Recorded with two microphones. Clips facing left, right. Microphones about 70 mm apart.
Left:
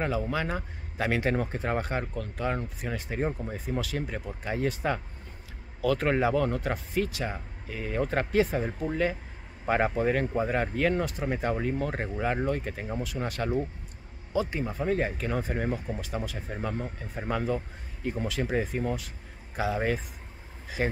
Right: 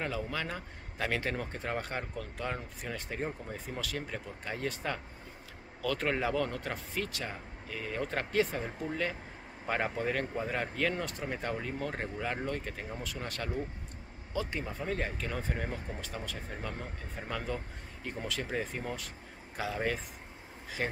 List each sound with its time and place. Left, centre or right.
0.0 s speech: centre
3.2 s speech: left
3.6 s speech: centre